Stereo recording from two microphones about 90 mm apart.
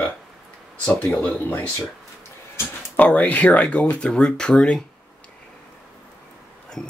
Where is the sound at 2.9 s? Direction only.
15° left (ahead or behind).